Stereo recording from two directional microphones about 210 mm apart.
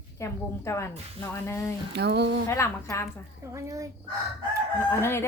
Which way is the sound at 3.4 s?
15° right (ahead or behind).